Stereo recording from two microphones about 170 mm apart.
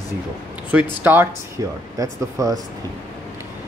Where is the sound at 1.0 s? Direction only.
10° right (ahead or behind).